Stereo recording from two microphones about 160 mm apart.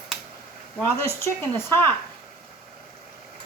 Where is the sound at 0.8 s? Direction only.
15° left (ahead or behind).